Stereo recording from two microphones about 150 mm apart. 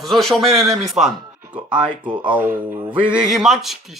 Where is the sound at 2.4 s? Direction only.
10° right (ahead or behind).